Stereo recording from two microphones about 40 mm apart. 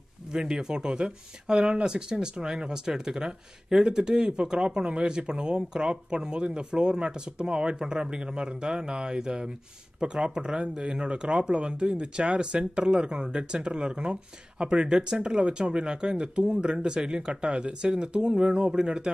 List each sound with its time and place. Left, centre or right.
0.3 s speech: centre